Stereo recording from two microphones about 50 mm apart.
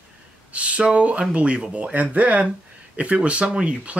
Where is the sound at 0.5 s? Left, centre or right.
Right.